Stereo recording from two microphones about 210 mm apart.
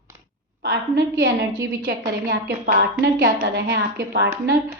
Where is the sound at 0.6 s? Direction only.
50° right (ahead or behind).